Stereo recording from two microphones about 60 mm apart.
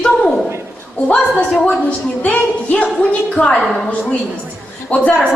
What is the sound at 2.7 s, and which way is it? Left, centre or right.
Music, centre.